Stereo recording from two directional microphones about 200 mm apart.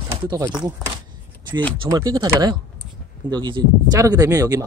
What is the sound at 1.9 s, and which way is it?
Speech, 20° right (ahead or behind).